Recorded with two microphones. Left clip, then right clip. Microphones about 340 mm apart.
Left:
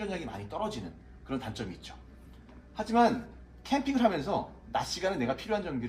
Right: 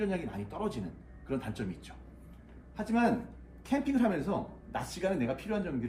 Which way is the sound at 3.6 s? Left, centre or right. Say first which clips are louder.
Left 3 dB; centre.